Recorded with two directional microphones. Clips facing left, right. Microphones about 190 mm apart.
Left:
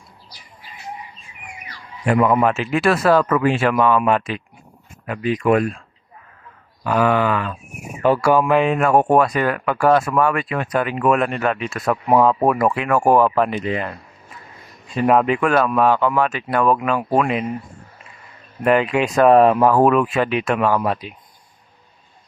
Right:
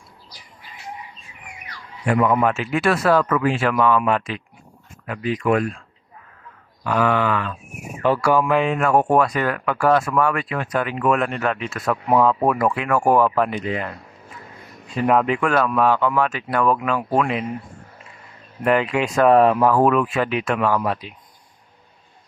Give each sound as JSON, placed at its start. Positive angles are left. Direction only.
{"t": 2.0, "sound": "speech", "side_deg": 25}
{"t": 6.8, "sound": "a sound", "side_deg": 15}
{"t": 8.0, "sound": "speech", "side_deg": 15}
{"t": 10.8, "sound": "a sound", "side_deg": 20}
{"t": 11.3, "sound": "speech", "side_deg": 30}
{"t": 15.0, "sound": "speech", "side_deg": 20}
{"t": 18.6, "sound": "speech", "side_deg": 20}